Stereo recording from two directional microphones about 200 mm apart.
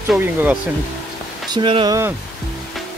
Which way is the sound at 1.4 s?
25° right (ahead or behind).